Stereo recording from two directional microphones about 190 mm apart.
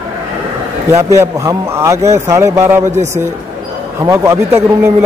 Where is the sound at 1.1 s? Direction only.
15° right (ahead or behind).